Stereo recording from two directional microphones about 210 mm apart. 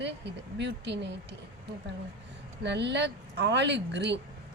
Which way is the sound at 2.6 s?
55° right (ahead or behind).